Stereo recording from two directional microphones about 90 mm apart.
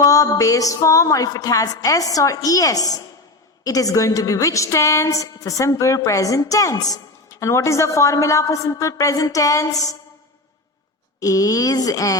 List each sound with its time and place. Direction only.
0.0 s a woman's voice: 40° left (ahead or behind)
11.2 s a woman's voice: 40° left (ahead or behind)